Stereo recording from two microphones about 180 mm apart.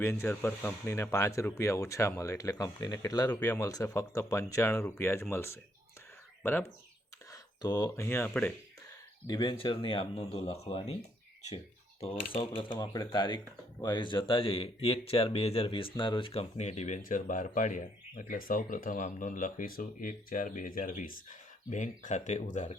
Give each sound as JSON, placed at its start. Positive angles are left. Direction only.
{"t": 0.0, "sound": "speech", "side_deg": 15}
{"t": 9.2, "sound": "speech", "side_deg": 25}
{"t": 11.4, "sound": "a sound", "side_deg": 35}
{"t": 12.3, "sound": "speech", "side_deg": 30}